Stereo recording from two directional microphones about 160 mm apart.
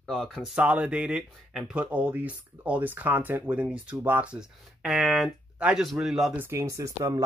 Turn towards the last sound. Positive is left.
turn(degrees=-20)  # may be behind; listen again after turning